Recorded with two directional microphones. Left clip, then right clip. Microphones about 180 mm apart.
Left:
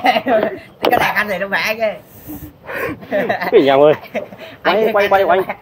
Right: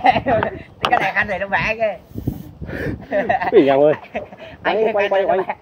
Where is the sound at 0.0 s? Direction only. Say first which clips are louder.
Left 2 dB; 65° left (ahead or behind).